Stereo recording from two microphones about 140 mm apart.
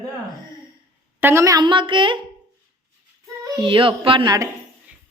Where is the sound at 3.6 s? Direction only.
40° right (ahead or behind).